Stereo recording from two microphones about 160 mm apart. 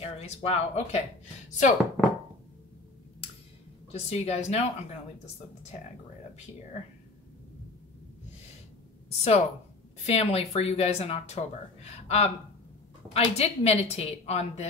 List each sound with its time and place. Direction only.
0.0 s speech: 40° left (ahead or behind)
3.9 s speech: 40° left (ahead or behind)
9.1 s speech: 40° left (ahead or behind)